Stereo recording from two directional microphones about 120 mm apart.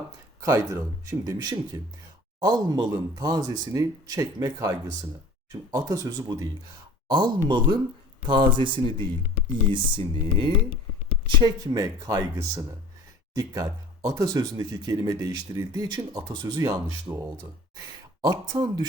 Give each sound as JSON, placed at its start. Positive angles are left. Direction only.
{"t": 0.4, "sound": "speech", "side_deg": -25}